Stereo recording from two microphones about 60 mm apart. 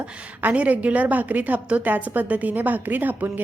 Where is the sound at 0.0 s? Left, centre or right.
Right.